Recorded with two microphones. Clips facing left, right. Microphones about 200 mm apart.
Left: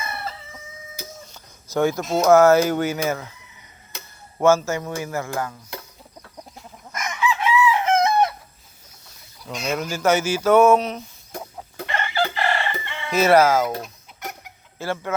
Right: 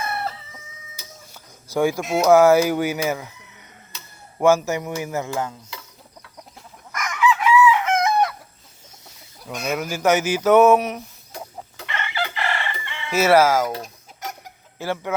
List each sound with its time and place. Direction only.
1.3 s speech: 10° right (ahead or behind)
4.4 s speech: 15° right (ahead or behind)
6.9 s chicken: 25° left (ahead or behind)
9.6 s speech: 15° right (ahead or behind)
11.8 s chicken: 40° left (ahead or behind)
13.1 s speech: 10° right (ahead or behind)
13.8 s chicken: 40° right (ahead or behind)
14.8 s speech: 15° right (ahead or behind)